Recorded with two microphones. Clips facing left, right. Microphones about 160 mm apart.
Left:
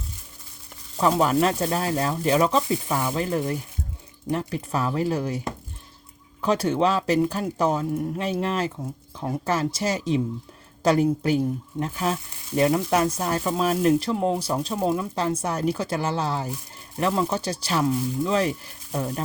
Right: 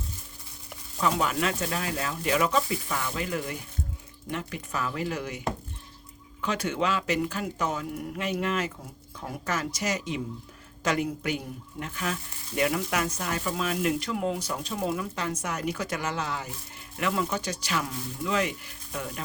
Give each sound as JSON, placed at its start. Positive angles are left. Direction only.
{"t": 0.9, "sound": "speech", "side_deg": 35}
{"t": 6.4, "sound": "speech", "side_deg": 35}